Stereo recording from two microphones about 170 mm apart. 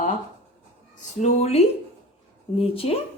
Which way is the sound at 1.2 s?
40° left (ahead or behind).